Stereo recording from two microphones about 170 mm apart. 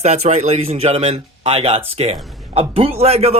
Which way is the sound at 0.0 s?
40° right (ahead or behind).